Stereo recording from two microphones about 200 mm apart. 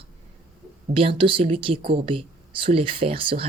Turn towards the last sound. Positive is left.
turn(degrees=-25)  # may be behind; listen again after turning